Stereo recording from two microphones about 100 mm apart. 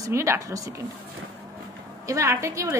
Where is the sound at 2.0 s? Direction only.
30° right (ahead or behind).